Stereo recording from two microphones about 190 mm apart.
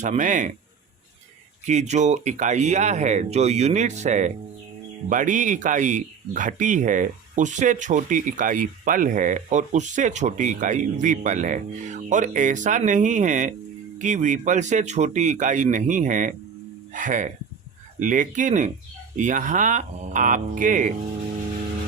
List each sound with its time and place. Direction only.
0.0 s speech: 40° right (ahead or behind)
1.6 s speech: 35° right (ahead or behind)